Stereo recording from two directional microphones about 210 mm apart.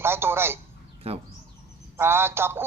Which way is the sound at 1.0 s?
30° right (ahead or behind).